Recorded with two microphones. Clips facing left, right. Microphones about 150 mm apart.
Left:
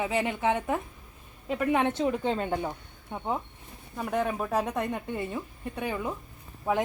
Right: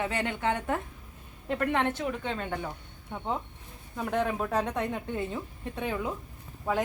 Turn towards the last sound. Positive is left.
turn(degrees=10)  # may be behind; listen again after turning